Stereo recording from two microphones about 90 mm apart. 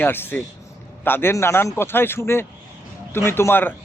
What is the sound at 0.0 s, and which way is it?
A man's voice, 25° left (ahead or behind).